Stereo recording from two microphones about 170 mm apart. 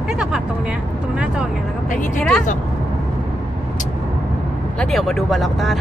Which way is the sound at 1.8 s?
50° left (ahead or behind).